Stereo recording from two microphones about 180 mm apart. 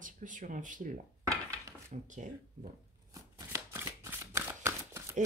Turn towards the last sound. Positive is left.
turn(degrees=-15)  # may be behind; listen again after turning